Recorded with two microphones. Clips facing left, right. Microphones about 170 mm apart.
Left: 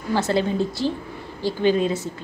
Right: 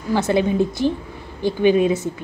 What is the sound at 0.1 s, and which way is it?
A woman's voice, 15° right (ahead or behind).